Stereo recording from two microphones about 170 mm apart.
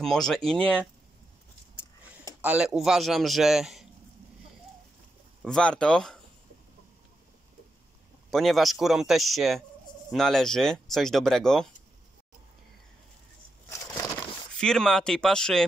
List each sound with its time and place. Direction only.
0.0 s speech: 5° left (ahead or behind)
2.4 s speech: 5° right (ahead or behind)
5.4 s speech: 5° left (ahead or behind)
8.3 s speech: centre (ahead or behind)
13.7 s a sound: 20° left (ahead or behind)
14.6 s speech: 5° left (ahead or behind)